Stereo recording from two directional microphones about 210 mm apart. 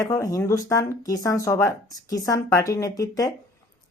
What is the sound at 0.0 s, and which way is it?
Speech, 15° left (ahead or behind).